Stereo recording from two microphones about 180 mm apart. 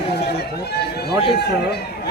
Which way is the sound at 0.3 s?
65° left (ahead or behind).